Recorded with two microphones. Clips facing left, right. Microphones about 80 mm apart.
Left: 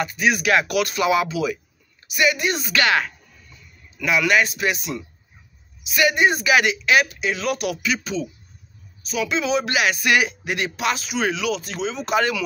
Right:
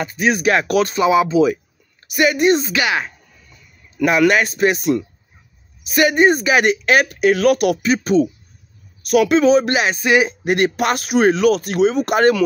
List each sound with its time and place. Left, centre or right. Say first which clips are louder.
0.0 s speech: right 3 dB; right
2.0 s speech: right 6 dB; right
2.7 s speech: even; centre
4.0 s speech: right 5 dB; right
9.0 s a woman's voice: right 10 dB; right
9.4 s speech: right 7 dB; right
10.4 s speech: right 7 dB; right